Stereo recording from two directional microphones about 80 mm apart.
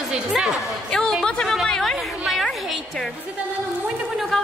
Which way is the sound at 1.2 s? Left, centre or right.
Centre.